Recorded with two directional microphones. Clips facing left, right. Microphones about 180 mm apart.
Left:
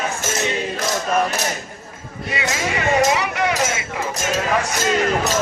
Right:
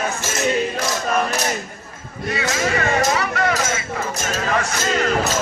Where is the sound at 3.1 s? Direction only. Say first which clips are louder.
Even; 15° left (ahead or behind).